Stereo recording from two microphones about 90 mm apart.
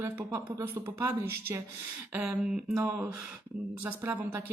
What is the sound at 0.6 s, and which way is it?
Speech, 30° right (ahead or behind).